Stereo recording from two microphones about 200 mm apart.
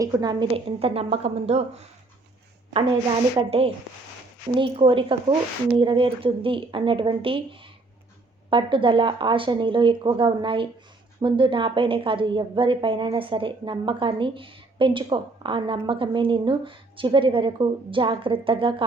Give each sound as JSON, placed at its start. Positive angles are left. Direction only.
{"t": 0.0, "sound": "a woman's voice", "side_deg": -20}
{"t": 3.3, "sound": "a woman's voice", "side_deg": -30}
{"t": 8.4, "sound": "a woman's voice", "side_deg": -25}